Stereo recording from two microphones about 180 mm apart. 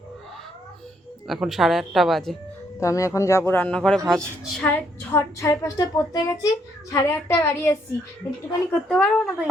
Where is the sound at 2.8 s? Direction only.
15° left (ahead or behind).